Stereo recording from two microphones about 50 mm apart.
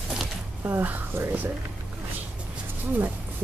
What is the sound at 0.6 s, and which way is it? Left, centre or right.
Speech, right.